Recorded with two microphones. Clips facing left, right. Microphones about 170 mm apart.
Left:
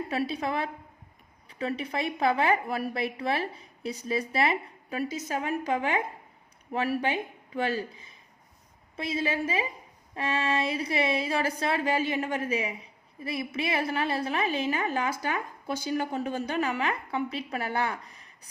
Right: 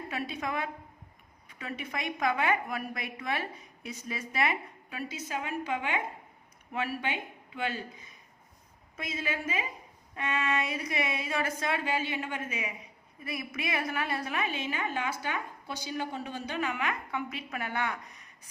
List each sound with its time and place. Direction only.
0.1 s speech: 35° left (ahead or behind)